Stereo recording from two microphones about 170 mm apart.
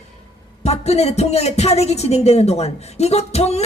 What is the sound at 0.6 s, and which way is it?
Speech, 40° left (ahead or behind).